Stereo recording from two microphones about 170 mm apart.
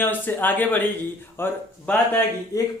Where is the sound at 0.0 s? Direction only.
10° left (ahead or behind).